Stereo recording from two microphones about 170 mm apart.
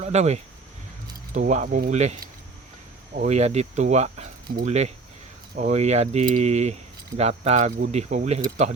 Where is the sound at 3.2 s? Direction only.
40° right (ahead or behind).